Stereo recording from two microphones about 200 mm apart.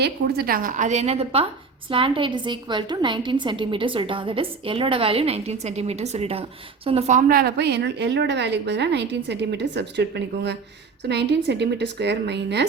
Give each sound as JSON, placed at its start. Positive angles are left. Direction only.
{"t": 0.0, "sound": "a woman's voice", "side_deg": -50}